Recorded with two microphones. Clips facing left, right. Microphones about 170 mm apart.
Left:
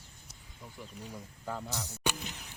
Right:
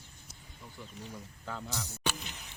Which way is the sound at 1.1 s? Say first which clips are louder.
Left 4 dB; 10° left (ahead or behind).